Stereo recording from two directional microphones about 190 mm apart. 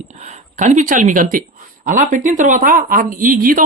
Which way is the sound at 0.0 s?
35° right (ahead or behind).